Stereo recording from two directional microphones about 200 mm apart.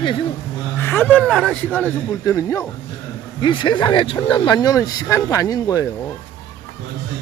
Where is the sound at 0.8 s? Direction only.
10° left (ahead or behind).